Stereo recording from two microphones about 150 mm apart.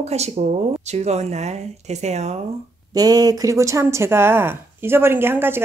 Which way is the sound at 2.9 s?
25° right (ahead or behind).